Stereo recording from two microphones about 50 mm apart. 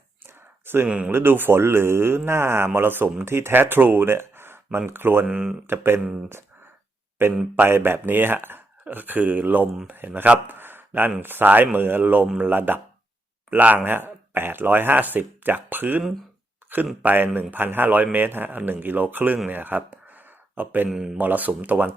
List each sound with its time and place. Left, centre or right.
0.2 s a sound: right
0.9 s speech: centre
1.1 s speech: right
5.2 s speech: centre
5.6 s speech: right
7.2 s speech: right
10.2 s speech: right
10.6 s a sound: right
11.2 s speech: right
19.5 s a sound: right
20.9 s speech: centre
21.2 s speech: right